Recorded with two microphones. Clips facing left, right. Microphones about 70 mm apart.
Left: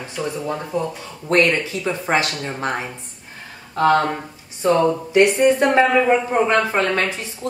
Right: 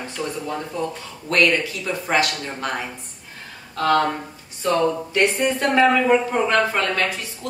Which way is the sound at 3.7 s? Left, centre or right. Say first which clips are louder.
Left 3 dB; left.